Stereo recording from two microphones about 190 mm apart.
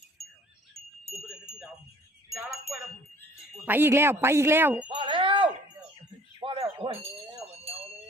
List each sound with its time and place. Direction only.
0.7 s wind chime: centre (ahead or behind)
3.7 s speech: 10° right (ahead or behind)
4.9 s wind chime: 25° right (ahead or behind)
7.4 s a sound: 35° right (ahead or behind)